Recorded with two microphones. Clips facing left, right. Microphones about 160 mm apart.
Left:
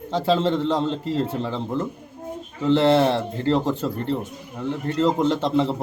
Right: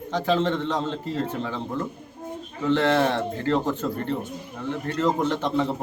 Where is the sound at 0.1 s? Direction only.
30° left (ahead or behind).